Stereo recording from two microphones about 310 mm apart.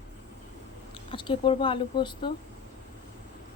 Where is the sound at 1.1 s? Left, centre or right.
Centre.